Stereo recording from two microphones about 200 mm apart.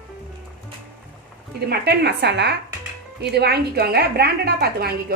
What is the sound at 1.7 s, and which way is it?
A woman's voice, 55° right (ahead or behind).